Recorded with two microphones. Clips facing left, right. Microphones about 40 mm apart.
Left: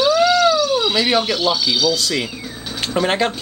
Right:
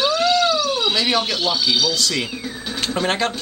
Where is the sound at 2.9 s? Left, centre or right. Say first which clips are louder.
Left 4 dB; centre.